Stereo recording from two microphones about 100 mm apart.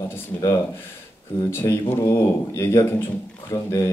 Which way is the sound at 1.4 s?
25° left (ahead or behind).